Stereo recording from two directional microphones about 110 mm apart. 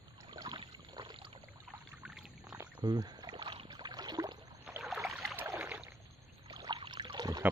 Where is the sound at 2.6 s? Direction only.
35° right (ahead or behind).